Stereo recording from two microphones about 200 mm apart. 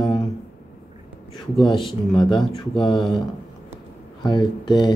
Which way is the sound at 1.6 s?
25° left (ahead or behind).